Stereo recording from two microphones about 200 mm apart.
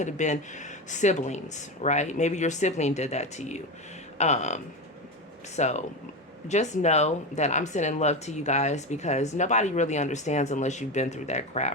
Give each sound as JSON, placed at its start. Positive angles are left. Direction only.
{"t": 0.0, "sound": "speech", "side_deg": 35}